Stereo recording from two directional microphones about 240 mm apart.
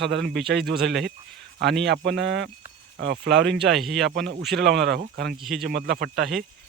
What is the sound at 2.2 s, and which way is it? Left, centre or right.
A man's voice, right.